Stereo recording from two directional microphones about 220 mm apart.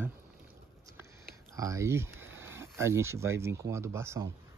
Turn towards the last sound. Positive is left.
turn(degrees=-10)  # may be behind; listen again after turning